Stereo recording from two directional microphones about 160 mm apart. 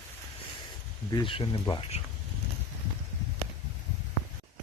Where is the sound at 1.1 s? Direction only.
30° left (ahead or behind).